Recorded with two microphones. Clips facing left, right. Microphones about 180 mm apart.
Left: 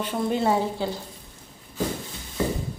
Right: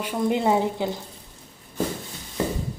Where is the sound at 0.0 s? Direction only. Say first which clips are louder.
Right 1 dB; 15° right (ahead or behind).